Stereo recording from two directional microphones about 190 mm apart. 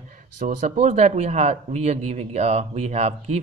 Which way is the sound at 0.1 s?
40° right (ahead or behind).